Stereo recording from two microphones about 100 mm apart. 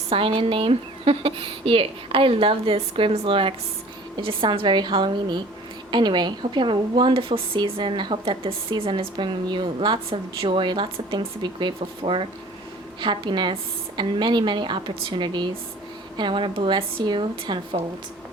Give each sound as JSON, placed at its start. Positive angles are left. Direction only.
{"t": 0.1, "sound": "a woman's voice", "side_deg": -65}